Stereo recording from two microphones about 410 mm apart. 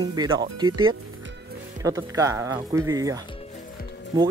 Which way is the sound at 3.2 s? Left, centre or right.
Centre.